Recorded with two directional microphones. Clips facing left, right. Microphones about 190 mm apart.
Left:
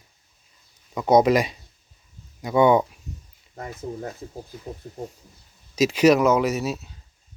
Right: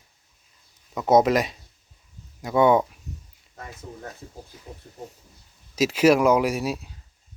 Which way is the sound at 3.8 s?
35° left (ahead or behind).